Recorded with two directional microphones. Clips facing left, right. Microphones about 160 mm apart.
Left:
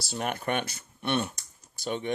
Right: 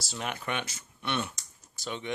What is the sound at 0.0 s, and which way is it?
Speech, 50° left (ahead or behind).